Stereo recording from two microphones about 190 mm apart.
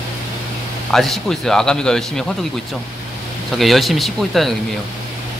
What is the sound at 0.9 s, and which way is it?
Speech, centre (ahead or behind).